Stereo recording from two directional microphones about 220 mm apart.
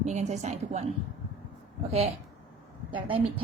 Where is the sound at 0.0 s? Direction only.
30° right (ahead or behind).